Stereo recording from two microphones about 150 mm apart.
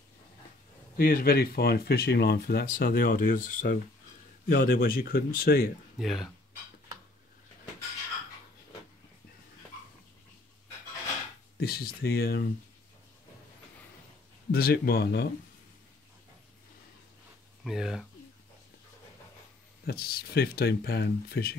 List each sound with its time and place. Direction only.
0.9 s speech: 80° left; by 3.8 s 60° left (ahead or behind)
4.5 s speech: 80° left
5.9 s speech: centre (ahead or behind)
11.6 s speech: 90° left
14.5 s speech: 85° left
17.6 s speech: 5° right (ahead or behind)
19.9 s speech: 90° left